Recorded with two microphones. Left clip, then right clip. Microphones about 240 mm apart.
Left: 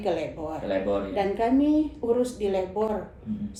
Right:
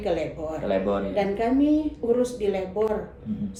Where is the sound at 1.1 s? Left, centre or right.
Centre.